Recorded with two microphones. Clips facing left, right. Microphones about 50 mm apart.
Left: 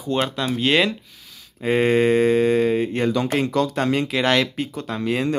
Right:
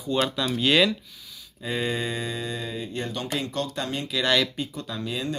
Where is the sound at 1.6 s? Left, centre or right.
Left.